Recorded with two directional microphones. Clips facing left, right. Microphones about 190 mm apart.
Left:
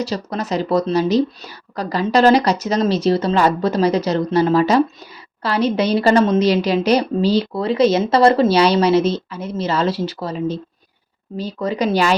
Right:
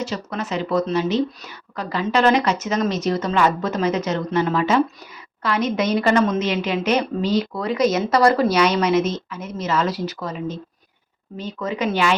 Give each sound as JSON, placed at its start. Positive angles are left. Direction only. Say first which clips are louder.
{"t": 0.0, "sound": "a woman's voice", "louder": "left 3 dB", "side_deg": 35}